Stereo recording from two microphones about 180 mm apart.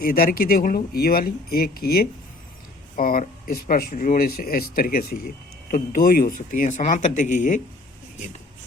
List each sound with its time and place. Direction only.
0.0 s speech: 55° left (ahead or behind)